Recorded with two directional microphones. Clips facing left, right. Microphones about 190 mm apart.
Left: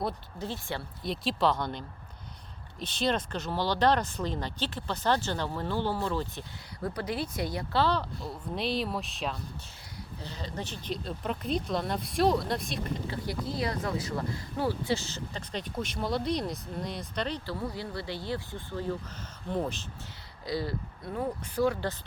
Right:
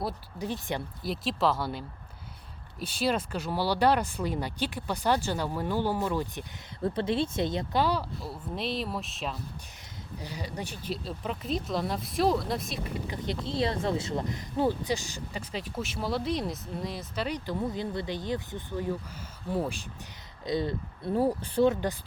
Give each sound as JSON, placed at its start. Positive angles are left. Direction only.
{"t": 0.3, "sound": "speech", "side_deg": -15}
{"t": 1.0, "sound": "speech", "side_deg": 0}
{"t": 2.8, "sound": "speech", "side_deg": -10}
{"t": 6.8, "sound": "speech", "side_deg": -25}
{"t": 10.2, "sound": "speech", "side_deg": -10}
{"t": 13.1, "sound": "speech", "side_deg": -25}
{"t": 20.4, "sound": "speech", "side_deg": -20}